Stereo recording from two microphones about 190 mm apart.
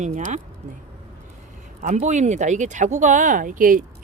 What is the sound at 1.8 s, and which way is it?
Speech, 40° right (ahead or behind).